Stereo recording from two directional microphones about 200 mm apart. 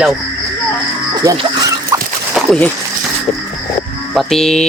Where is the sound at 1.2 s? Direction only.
20° right (ahead or behind).